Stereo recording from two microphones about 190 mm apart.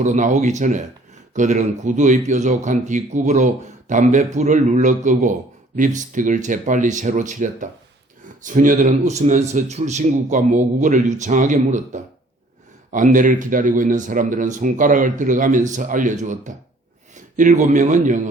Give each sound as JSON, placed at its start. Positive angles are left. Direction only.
{"t": 0.0, "sound": "a man's voice", "side_deg": -35}